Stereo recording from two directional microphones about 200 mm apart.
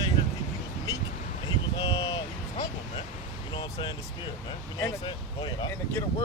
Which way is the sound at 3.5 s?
25° left (ahead or behind).